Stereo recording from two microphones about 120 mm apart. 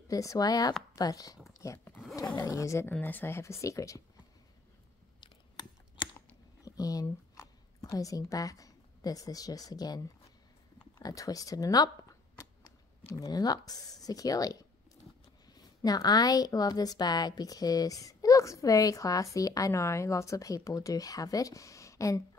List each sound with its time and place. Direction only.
0.1 s speech: 30° left (ahead or behind)
1.6 s zipper: 25° left (ahead or behind)
2.3 s a woman's voice: 25° left (ahead or behind)
5.2 s typing: 40° left (ahead or behind)
6.1 s a sound: 30° left (ahead or behind)
7.9 s a woman's voice: 25° left (ahead or behind)